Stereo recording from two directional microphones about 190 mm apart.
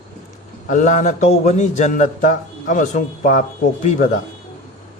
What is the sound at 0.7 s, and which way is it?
A man's voice, 40° left (ahead or behind).